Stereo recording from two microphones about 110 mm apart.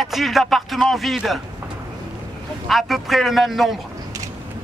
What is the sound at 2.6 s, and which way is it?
A man's voice, centre (ahead or behind).